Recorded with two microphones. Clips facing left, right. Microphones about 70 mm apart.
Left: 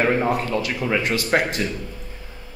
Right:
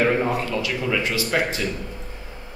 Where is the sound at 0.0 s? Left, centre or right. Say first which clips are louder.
Even; left.